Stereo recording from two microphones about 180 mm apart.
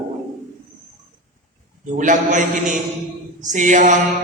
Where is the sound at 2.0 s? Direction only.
45° right (ahead or behind).